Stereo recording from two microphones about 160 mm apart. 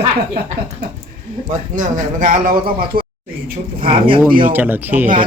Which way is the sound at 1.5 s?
55° right (ahead or behind).